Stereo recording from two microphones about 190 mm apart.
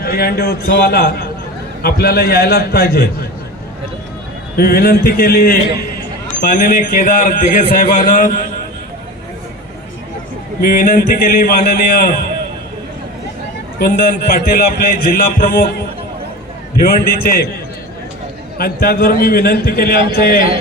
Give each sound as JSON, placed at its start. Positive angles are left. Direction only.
{"t": 0.0, "sound": "a man's voice", "side_deg": 55}
{"t": 4.5, "sound": "a man's voice", "side_deg": 55}
{"t": 10.6, "sound": "a man's voice", "side_deg": 50}
{"t": 13.7, "sound": "a man's voice", "side_deg": 50}
{"t": 16.8, "sound": "a man's voice", "side_deg": 55}
{"t": 18.5, "sound": "a man's voice", "side_deg": 50}